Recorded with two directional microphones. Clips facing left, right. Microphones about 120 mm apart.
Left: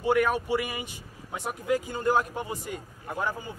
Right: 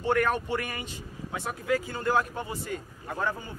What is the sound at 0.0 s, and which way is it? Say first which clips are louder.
Speech: left 2 dB; 10° left (ahead or behind).